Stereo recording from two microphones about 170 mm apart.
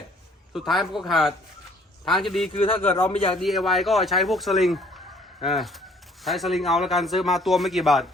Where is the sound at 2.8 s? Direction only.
10° left (ahead or behind).